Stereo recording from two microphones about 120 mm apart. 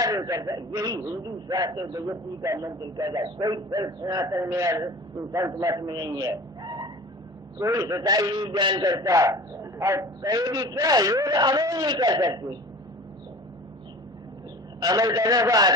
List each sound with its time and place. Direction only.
0.0 s a man's voice: 30° right (ahead or behind)
14.8 s a man's voice: 35° right (ahead or behind)